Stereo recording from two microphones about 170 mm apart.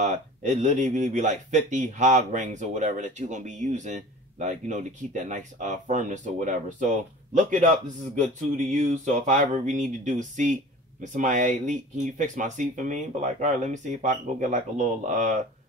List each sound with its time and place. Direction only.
0.0 s speech: 45° right (ahead or behind)